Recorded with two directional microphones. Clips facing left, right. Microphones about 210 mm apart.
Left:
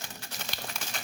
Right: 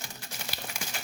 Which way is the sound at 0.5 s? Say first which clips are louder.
Even; 10° right (ahead or behind).